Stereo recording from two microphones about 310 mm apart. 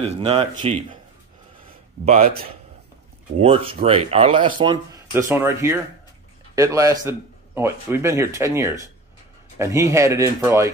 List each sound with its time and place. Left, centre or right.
0.0 s speech: centre
2.0 s speech: right